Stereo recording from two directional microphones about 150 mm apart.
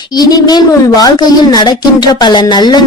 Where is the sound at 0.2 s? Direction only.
25° left (ahead or behind).